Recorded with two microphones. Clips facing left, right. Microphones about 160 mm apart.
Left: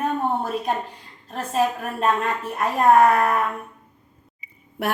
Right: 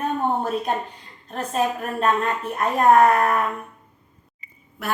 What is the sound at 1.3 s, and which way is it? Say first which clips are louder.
Speech: left 1 dB; 5° left (ahead or behind).